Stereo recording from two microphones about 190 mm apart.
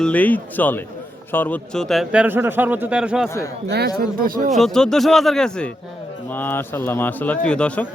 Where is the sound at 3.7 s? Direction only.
55° right (ahead or behind).